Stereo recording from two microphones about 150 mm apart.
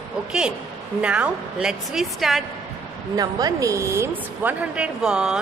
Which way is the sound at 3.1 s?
25° right (ahead or behind).